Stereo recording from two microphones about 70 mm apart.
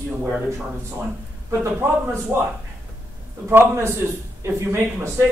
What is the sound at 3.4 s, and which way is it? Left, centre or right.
Speech, right.